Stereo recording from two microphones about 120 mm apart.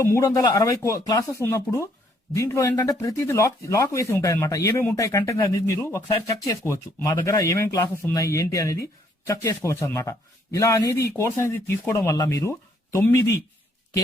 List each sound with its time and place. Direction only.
0.0 s speech: 25° left (ahead or behind)